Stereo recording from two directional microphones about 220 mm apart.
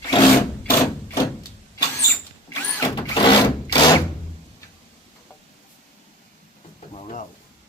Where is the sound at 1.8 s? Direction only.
10° left (ahead or behind).